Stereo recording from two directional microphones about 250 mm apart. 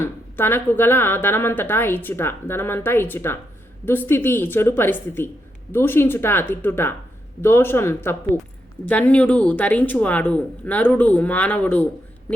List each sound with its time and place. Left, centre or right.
0.0 s speech: centre